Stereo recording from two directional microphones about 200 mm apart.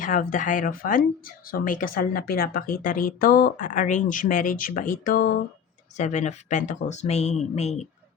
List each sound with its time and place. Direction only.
0.0 s speech: 45° left (ahead or behind)
6.0 s speech: 35° left (ahead or behind)